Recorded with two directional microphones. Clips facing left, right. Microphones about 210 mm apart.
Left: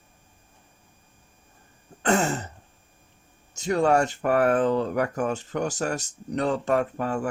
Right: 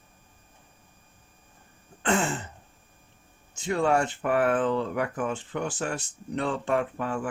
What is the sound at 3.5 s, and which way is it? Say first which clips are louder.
Speech: left 3 dB; 40° left (ahead or behind).